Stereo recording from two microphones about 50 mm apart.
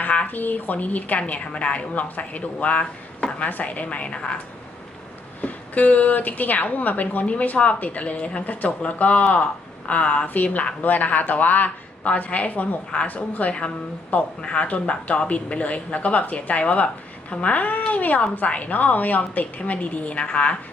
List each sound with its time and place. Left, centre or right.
0.0 s a woman's voice: left
3.2 s a sound: left
3.5 s speech: left
5.4 s a woman's voice: left